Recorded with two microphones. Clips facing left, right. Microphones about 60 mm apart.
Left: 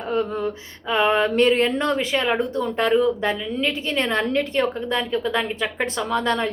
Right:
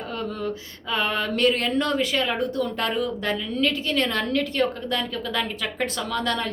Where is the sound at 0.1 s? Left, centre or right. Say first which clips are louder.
Left 7 dB; left.